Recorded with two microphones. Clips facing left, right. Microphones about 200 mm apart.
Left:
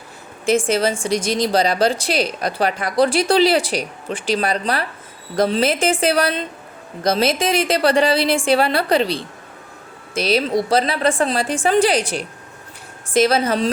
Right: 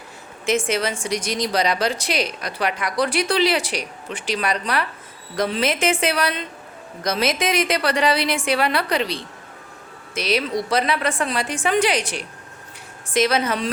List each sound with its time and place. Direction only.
0.4 s a woman's voice: 30° left (ahead or behind)